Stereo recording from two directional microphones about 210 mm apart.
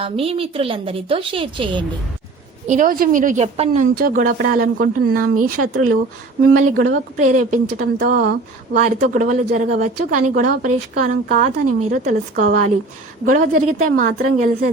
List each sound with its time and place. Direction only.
0.0 s a woman's voice: 25° right (ahead or behind)
2.6 s speech: 40° right (ahead or behind)
5.2 s speech: 90° right
6.4 s speech: 45° right (ahead or behind)